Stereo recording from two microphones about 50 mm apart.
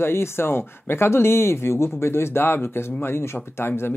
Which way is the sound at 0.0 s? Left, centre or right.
Left.